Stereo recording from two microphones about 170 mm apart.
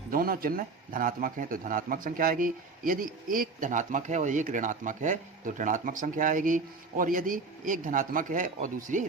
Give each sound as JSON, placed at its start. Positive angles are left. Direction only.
{"t": 0.1, "sound": "speech", "side_deg": -60}